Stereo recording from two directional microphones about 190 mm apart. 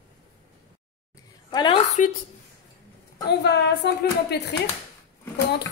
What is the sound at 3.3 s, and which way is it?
Speech, 60° left (ahead or behind).